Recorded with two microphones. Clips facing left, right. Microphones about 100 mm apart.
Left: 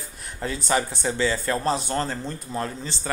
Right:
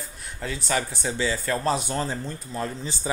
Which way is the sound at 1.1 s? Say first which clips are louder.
Left 2 dB; 10° right (ahead or behind).